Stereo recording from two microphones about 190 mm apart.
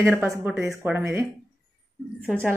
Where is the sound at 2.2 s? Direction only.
10° right (ahead or behind).